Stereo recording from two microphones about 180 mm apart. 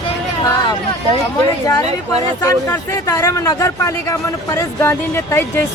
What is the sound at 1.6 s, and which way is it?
Speech, 20° left (ahead or behind).